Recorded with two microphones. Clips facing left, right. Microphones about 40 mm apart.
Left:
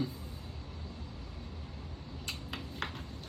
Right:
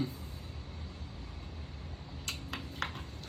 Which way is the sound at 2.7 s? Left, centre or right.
Right.